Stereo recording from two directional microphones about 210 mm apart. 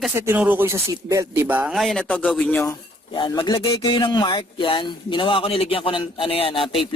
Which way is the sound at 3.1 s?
20° left (ahead or behind).